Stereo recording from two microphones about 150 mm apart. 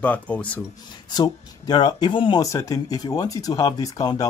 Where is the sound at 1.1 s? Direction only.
30° left (ahead or behind).